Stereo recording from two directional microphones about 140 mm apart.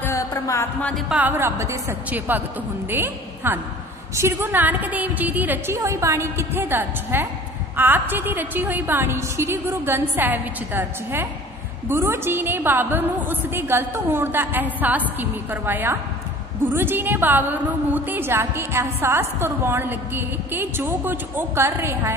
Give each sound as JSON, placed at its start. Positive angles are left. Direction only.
{"t": 0.0, "sound": "music", "side_deg": 20}
{"t": 0.7, "sound": "music", "side_deg": 10}
{"t": 1.0, "sound": "a woman's voice", "side_deg": -10}